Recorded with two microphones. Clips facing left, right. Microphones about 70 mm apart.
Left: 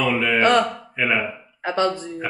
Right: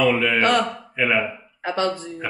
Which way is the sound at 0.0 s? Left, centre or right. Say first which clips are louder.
Even; centre.